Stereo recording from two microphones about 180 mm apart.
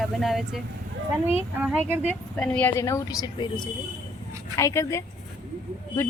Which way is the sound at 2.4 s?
10° left (ahead or behind).